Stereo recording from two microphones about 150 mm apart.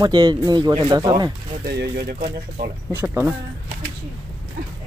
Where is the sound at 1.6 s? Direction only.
90° right.